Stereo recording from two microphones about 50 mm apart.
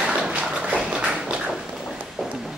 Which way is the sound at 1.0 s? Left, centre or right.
Centre.